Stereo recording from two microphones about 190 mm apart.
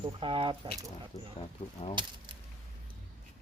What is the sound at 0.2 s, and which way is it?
Speech, 25° right (ahead or behind).